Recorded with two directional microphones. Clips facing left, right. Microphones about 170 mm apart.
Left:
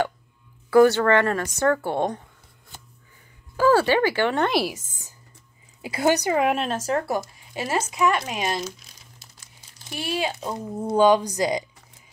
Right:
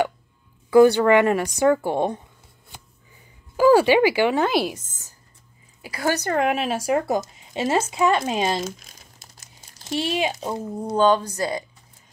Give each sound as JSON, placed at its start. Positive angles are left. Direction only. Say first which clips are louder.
{"t": 0.7, "sound": "a woman's voice", "louder": "right 2 dB", "side_deg": -15}
{"t": 3.5, "sound": "speech", "louder": "right 4 dB", "side_deg": -15}
{"t": 4.5, "sound": "speech", "louder": "right 1 dB", "side_deg": 0}
{"t": 5.8, "sound": "a woman's voice", "louder": "left 3 dB", "side_deg": 20}
{"t": 6.3, "sound": "speech", "louder": "even", "side_deg": 0}
{"t": 8.6, "sound": "crumpling", "louder": "right 3 dB", "side_deg": -50}
{"t": 9.8, "sound": "speech", "louder": "right 4 dB", "side_deg": -25}
{"t": 10.6, "sound": "speech", "louder": "right 1 dB", "side_deg": 0}
{"t": 11.0, "sound": "speech", "louder": "left 1 dB", "side_deg": 15}